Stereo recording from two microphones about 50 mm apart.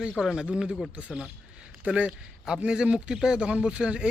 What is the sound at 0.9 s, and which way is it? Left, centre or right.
A man's voice, right.